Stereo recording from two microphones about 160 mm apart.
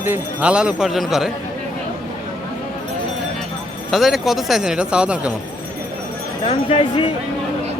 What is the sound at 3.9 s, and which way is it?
Speech, centre (ahead or behind).